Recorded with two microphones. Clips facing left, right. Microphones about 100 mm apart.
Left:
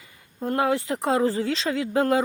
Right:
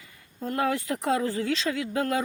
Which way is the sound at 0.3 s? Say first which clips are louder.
Left 4 dB; 30° left (ahead or behind).